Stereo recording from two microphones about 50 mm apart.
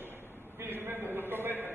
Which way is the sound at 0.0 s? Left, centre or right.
Right.